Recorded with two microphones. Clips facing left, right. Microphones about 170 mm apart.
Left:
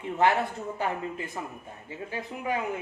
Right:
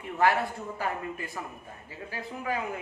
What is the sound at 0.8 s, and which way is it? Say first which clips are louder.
Speech: left 2 dB; 20° left (ahead or behind).